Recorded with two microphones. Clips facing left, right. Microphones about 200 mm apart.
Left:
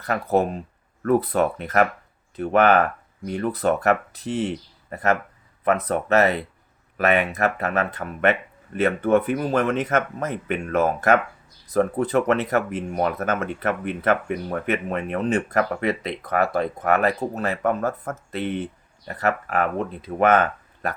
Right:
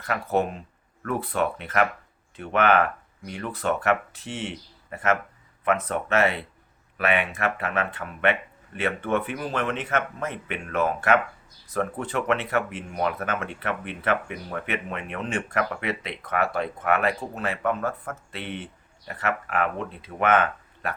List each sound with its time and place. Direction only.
0.0 s speech: 40° left (ahead or behind)